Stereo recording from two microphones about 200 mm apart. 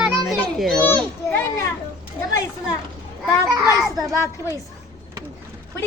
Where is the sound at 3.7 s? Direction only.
20° right (ahead or behind).